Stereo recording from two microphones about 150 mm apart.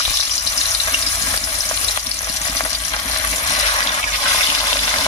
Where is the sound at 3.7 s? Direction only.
40° left (ahead or behind).